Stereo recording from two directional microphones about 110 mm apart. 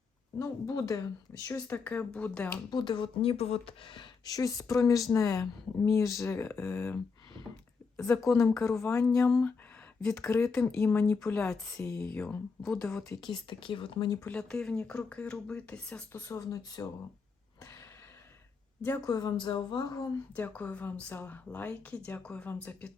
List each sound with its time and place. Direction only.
0.3 s speech: 30° left (ahead or behind)
1.5 s speech: 15° left (ahead or behind)
2.6 s speech: 45° left (ahead or behind)
4.3 s speech: 30° left (ahead or behind)
6.2 s speech: 20° left (ahead or behind)
8.2 s speech: 25° left (ahead or behind)
9.0 s speech: 10° left (ahead or behind)
10.2 s speech: 20° left (ahead or behind)
13.5 s speech: 50° left (ahead or behind)
14.3 s speech: 10° left (ahead or behind)
16.3 s speech: 30° left (ahead or behind)
19.0 s speech: 35° left (ahead or behind)
20.3 s speech: 15° left (ahead or behind)